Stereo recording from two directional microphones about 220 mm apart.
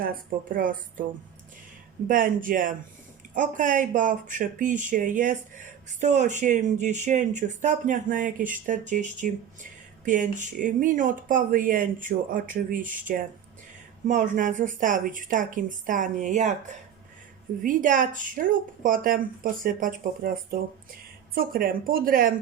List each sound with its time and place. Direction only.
0.5 s speech: 40° right (ahead or behind)
2.0 s speech: 40° right (ahead or behind)